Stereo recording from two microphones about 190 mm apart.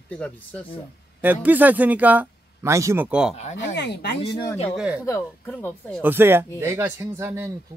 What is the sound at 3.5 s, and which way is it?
Speech, 65° left (ahead or behind).